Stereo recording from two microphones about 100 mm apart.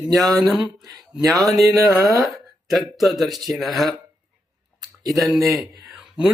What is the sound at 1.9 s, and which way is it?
Speech, 35° right (ahead or behind).